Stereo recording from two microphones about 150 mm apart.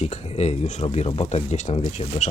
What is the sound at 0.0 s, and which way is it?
Speech, 45° left (ahead or behind).